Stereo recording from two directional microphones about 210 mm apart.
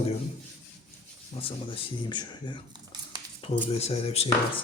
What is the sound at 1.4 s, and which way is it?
Speech, 25° left (ahead or behind).